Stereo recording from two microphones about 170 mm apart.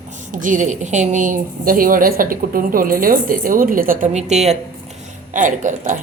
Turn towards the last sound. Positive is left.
turn(degrees=-50)  # may be behind; listen again after turning